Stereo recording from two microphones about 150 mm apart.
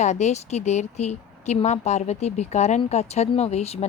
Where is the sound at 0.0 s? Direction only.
50° left (ahead or behind).